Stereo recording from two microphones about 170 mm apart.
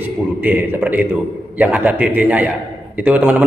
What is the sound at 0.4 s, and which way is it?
A man's voice, 10° right (ahead or behind).